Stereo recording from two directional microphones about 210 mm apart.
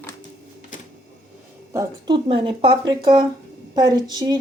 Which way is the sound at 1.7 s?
15° right (ahead or behind).